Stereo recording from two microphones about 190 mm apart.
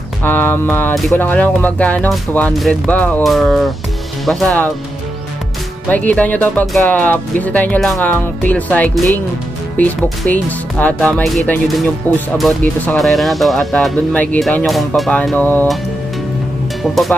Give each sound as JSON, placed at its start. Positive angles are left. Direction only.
{"t": 0.2, "sound": "speech", "side_deg": 10}
{"t": 5.9, "sound": "speech", "side_deg": 10}
{"t": 16.8, "sound": "speech", "side_deg": 0}